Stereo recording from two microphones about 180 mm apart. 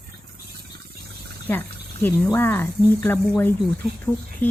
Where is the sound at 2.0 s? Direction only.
10° left (ahead or behind).